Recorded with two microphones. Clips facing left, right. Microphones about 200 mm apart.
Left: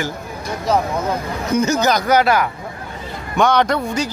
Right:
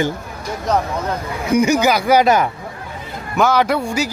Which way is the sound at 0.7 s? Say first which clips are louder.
Left 1 dB; centre (ahead or behind).